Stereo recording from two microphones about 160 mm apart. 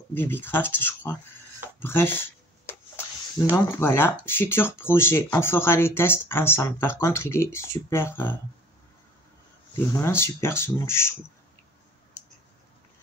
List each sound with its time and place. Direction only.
0.1 s speech: 15° left (ahead or behind)
3.5 s speech: 15° left (ahead or behind)
9.9 s speech: 15° left (ahead or behind)